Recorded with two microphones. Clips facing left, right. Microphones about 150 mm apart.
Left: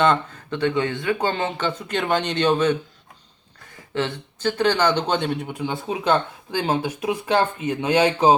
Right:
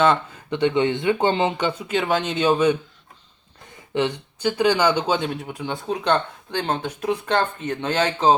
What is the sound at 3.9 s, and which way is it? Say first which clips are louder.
Speech: right 3 dB; 15° right (ahead or behind).